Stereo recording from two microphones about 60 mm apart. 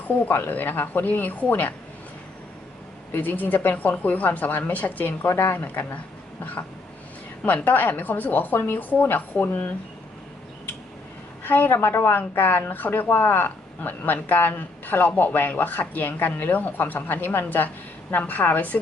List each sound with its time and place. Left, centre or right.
0.3 s speech: left
3.1 s a woman's voice: left
7.4 s speech: left
11.4 s a woman's voice: left